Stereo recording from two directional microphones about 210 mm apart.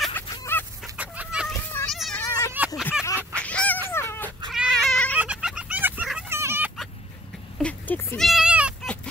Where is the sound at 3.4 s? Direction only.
5° left (ahead or behind).